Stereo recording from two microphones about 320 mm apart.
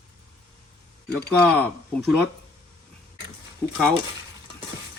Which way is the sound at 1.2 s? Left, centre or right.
Centre.